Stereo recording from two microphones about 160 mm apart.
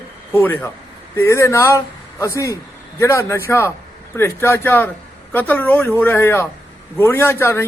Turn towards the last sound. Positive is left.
turn(degrees=15)  # may be behind; listen again after turning